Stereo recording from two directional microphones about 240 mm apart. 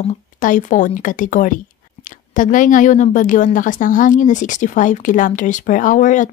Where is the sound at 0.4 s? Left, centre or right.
Left.